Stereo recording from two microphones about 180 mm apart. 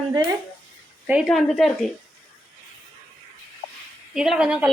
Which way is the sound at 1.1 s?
Centre (ahead or behind).